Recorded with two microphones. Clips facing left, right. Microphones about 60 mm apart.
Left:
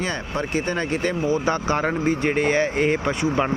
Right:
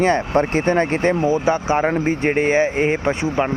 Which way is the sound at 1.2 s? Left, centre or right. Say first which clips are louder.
Right 4 dB; right.